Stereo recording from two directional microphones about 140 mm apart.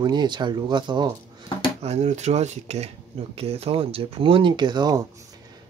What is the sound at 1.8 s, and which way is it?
Speech, 55° right (ahead or behind).